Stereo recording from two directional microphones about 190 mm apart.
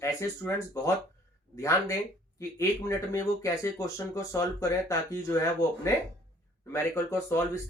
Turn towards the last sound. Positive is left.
turn(degrees=15)  # may be behind; listen again after turning